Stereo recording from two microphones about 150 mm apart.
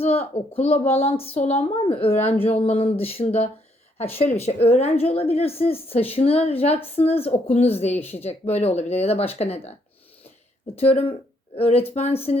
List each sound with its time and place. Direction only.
0.0 s a woman's voice: 40° left (ahead or behind)
10.8 s a woman's voice: 40° left (ahead or behind)